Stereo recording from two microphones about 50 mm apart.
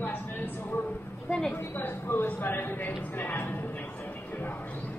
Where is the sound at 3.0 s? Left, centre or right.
Left.